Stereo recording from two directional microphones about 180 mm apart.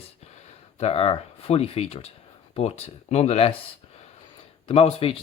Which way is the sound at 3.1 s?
35° left (ahead or behind).